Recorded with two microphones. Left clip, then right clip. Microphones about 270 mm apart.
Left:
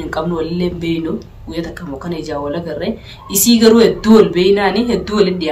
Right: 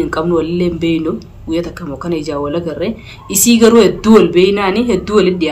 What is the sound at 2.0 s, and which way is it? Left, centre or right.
Speech, centre.